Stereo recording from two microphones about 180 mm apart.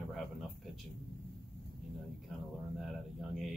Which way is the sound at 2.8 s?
Centre (ahead or behind).